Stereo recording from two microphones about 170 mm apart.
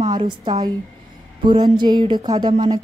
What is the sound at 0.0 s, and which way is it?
Speech, 25° right (ahead or behind).